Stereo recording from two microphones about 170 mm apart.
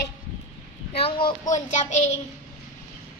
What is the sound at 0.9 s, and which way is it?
Speech, 30° left (ahead or behind).